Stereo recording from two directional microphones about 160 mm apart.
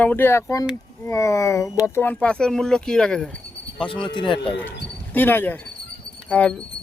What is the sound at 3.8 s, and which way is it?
Speech, 30° left (ahead or behind).